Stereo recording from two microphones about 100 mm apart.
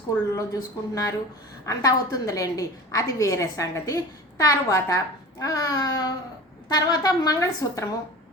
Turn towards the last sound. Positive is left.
turn(degrees=35)  # may be behind; listen again after turning